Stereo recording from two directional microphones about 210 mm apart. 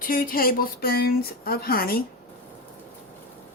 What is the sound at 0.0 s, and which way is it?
Speech, 45° left (ahead or behind).